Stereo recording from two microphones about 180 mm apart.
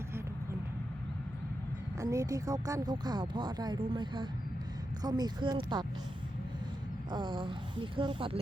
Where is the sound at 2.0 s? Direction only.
20° right (ahead or behind).